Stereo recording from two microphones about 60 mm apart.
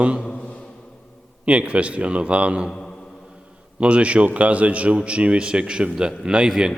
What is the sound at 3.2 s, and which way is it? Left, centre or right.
A man's voice, centre.